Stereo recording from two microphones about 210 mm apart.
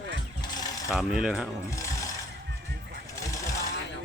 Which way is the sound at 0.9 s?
5° right (ahead or behind).